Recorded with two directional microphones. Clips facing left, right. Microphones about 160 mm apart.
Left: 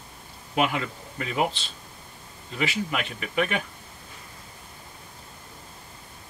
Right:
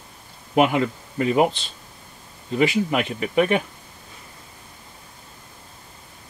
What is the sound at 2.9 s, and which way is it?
Speech, 35° right (ahead or behind).